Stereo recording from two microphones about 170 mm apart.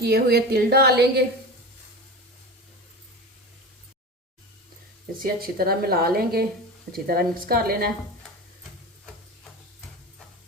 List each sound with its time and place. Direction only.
0.0 s a woman's voice: 70° right (ahead or behind)
5.2 s a woman's voice: 60° right (ahead or behind)